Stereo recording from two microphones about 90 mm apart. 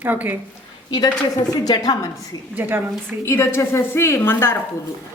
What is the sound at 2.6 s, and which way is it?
Speech, 25° right (ahead or behind).